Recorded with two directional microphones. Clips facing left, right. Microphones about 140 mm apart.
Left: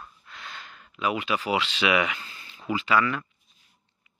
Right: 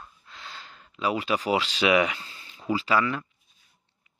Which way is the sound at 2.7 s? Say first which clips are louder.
Even; 35° right (ahead or behind).